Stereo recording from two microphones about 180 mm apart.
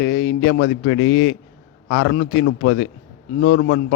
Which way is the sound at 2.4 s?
90° left.